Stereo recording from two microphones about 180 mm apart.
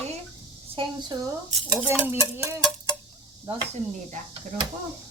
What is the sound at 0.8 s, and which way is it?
Speech, 20° right (ahead or behind).